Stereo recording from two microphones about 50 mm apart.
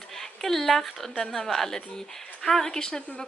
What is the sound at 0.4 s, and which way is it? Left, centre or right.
Speech, centre.